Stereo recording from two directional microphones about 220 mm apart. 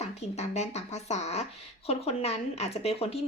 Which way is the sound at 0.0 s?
30° left (ahead or behind).